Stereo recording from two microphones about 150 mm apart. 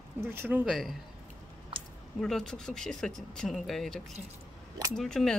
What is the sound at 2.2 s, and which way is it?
Speech, 5° left (ahead or behind).